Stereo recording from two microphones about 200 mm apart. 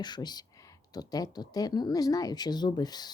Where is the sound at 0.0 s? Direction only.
20° left (ahead or behind).